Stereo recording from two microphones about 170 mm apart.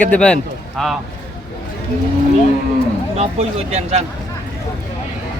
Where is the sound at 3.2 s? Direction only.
40° right (ahead or behind).